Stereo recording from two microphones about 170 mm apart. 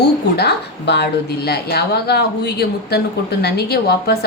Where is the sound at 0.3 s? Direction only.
80° left.